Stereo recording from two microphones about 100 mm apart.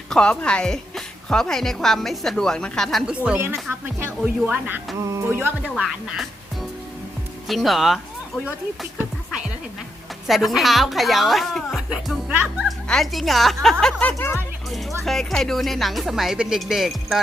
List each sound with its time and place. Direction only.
0.1 s a woman's voice: 10° left (ahead or behind)
3.2 s speech: 20° right (ahead or behind)
4.9 s speech: 30° right (ahead or behind)
5.8 s a woman's voice: centre (ahead or behind)
10.2 s a woman's voice: centre (ahead or behind)
14.1 s speech: 25° left (ahead or behind)
14.7 s music: centre (ahead or behind)
15.0 s a woman's voice: 5° left (ahead or behind)